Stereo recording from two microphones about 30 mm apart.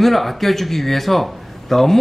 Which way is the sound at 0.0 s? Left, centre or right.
Centre.